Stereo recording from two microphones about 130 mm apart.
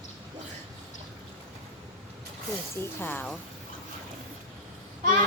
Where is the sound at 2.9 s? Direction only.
15° left (ahead or behind).